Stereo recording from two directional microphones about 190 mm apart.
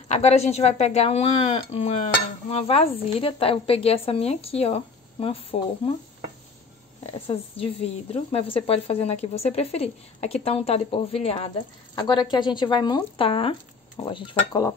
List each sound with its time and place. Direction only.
0.1 s a woman's voice: 35° left (ahead or behind)
7.2 s a woman's voice: 30° left (ahead or behind)